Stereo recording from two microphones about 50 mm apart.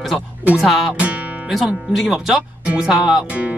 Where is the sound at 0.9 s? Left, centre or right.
Right.